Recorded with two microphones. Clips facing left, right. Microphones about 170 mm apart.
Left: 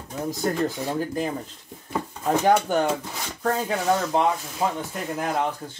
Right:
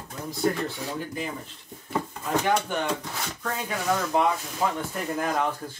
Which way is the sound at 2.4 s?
40° left (ahead or behind).